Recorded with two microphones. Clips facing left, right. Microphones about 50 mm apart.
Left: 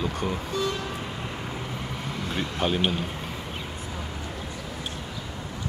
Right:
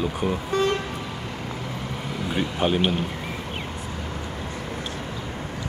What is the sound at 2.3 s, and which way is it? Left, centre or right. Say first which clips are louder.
Speech: right 4 dB; centre.